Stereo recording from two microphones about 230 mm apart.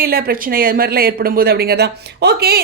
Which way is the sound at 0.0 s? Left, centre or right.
Right.